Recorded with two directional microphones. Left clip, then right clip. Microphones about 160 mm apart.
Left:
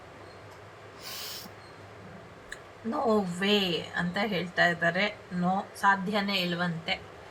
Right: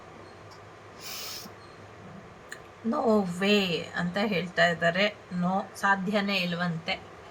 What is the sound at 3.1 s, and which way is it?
A woman's voice, 15° right (ahead or behind).